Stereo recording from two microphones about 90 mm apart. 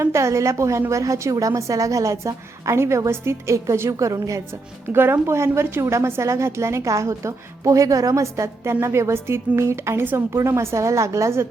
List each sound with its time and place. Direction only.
0.0 s a woman's voice: 30° right (ahead or behind)